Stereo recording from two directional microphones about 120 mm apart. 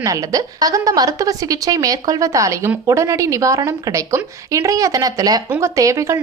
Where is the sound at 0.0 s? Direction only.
30° right (ahead or behind).